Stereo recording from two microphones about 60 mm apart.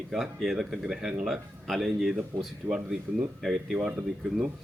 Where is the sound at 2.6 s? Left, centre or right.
Right.